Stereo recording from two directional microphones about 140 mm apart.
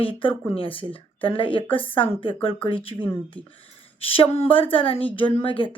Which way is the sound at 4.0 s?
40° left (ahead or behind).